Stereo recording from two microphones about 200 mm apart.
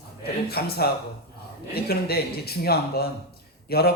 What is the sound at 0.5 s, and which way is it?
Speech, 50° left (ahead or behind).